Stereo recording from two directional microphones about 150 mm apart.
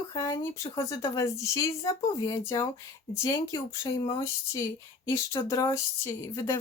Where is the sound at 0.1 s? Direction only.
25° left (ahead or behind).